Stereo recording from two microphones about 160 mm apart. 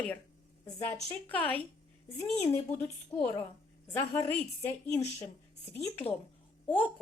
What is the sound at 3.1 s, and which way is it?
A woman's voice, 20° left (ahead or behind).